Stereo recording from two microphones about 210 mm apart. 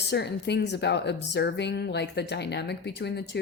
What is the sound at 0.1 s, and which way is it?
Speech, 55° left (ahead or behind).